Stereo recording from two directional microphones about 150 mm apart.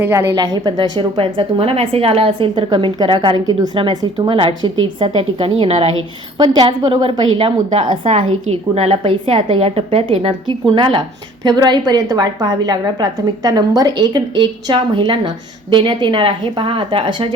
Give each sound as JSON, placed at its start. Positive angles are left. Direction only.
{"t": 0.0, "sound": "a woman's voice", "side_deg": -15}
{"t": 6.3, "sound": "a woman's voice", "side_deg": -30}